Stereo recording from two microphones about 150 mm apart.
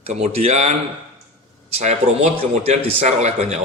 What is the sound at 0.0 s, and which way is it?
Speech, 45° right (ahead or behind).